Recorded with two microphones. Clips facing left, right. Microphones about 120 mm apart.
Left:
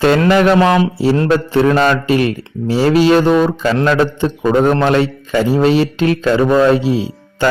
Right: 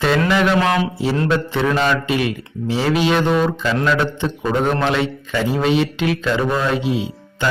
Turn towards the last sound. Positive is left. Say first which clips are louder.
# left 5 dB
turn(degrees=35)  # may be behind; listen again after turning